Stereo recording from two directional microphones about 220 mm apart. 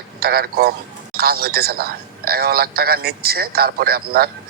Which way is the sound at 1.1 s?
45° right (ahead or behind).